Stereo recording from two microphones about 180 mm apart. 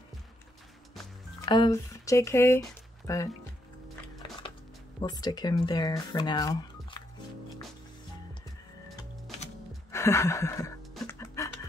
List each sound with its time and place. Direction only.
1.4 s speech: 20° left (ahead or behind)
5.0 s speech: 20° left (ahead or behind)
9.8 s music: 15° left (ahead or behind)